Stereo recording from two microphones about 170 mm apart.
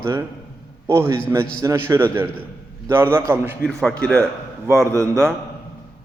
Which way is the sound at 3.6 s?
5° left (ahead or behind).